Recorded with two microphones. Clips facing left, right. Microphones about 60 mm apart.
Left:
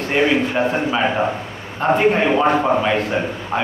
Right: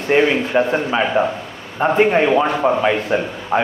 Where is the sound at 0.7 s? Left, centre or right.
Centre.